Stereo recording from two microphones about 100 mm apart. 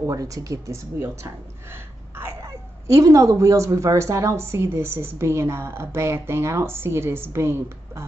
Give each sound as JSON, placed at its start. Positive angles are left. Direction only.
{"t": 0.0, "sound": "speech", "side_deg": -35}